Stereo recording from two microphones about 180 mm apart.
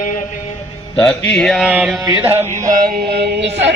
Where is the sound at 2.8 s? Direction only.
65° right (ahead or behind).